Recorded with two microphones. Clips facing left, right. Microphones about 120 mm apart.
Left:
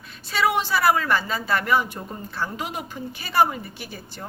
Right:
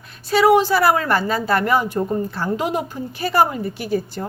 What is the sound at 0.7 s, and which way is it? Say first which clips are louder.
A woman's voice: right 4 dB; 50° right (ahead or behind).